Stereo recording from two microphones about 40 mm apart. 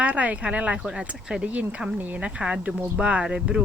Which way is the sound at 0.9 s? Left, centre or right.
Right.